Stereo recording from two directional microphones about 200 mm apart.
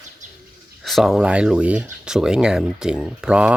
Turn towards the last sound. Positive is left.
turn(degrees=-5)  # may be behind; listen again after turning